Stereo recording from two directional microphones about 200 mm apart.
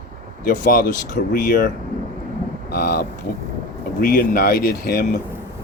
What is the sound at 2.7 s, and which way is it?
Speech, 50° left (ahead or behind).